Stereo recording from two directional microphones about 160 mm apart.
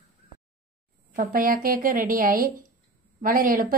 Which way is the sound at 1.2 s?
60° right (ahead or behind).